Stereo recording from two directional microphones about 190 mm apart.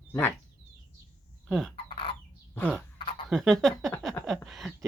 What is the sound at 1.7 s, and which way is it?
Chicken, 30° left (ahead or behind).